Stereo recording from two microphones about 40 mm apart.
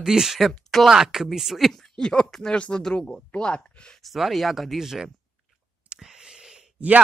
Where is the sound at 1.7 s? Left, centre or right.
Centre.